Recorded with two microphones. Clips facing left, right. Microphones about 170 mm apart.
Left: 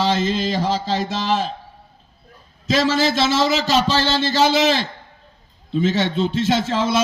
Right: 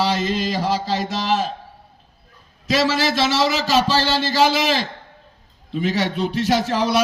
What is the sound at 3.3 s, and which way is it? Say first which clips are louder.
A man's voice: left 1 dB; 20° left (ahead or behind).